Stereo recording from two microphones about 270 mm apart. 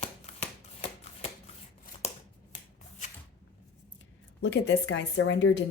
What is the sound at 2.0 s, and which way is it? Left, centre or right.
Scissors, left.